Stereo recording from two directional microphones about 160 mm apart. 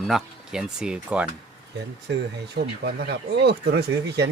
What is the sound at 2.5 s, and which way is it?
Speech, 90° right.